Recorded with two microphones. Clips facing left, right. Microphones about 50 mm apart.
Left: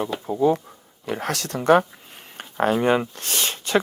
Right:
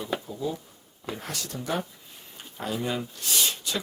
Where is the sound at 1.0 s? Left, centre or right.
Left.